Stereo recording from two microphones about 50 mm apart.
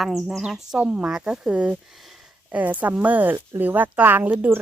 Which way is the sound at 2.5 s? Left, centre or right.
Right.